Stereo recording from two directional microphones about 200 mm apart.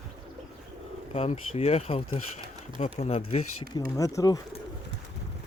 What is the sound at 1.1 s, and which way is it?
Speech, 30° left (ahead or behind).